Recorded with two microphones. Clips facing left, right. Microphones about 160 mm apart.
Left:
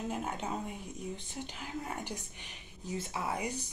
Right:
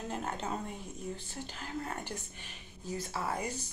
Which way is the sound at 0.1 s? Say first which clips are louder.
Even; 10° left (ahead or behind).